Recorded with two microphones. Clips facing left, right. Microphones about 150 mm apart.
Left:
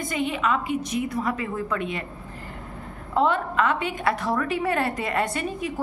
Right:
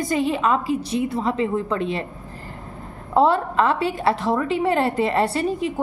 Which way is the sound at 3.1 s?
35° right (ahead or behind).